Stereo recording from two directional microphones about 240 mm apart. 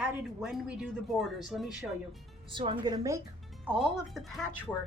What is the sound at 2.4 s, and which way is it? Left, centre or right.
Speech, right.